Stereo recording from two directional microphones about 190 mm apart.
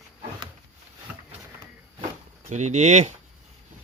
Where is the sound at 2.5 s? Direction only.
40° right (ahead or behind).